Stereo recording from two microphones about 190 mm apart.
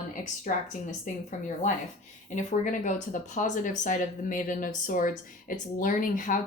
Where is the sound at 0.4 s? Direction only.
40° left (ahead or behind).